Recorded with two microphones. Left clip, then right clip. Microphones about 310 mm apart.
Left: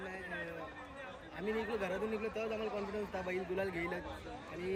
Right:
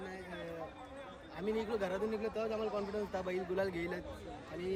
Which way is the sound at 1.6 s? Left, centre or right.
Centre.